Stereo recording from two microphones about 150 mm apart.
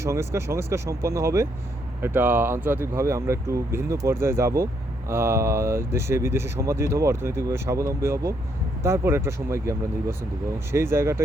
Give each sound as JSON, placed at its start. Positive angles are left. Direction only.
{"t": 0.0, "sound": "speech", "side_deg": -20}